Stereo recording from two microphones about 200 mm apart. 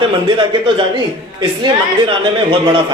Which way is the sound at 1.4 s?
25° right (ahead or behind).